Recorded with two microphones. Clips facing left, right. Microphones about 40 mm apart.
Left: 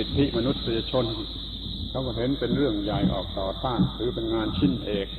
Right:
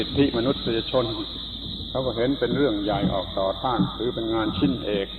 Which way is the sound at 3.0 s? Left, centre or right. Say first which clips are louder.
Right 3 dB; centre.